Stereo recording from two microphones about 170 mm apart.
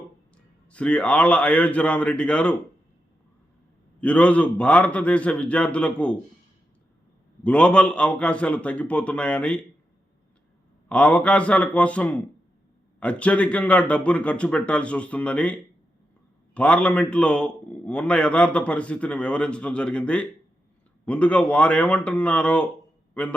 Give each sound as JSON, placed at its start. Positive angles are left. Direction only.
{"t": 0.7, "sound": "a man's voice", "side_deg": 5}
{"t": 4.0, "sound": "a man's voice", "side_deg": 5}
{"t": 7.4, "sound": "a man's voice", "side_deg": 5}
{"t": 10.8, "sound": "a man's voice", "side_deg": 5}
{"t": 16.6, "sound": "a man's voice", "side_deg": 5}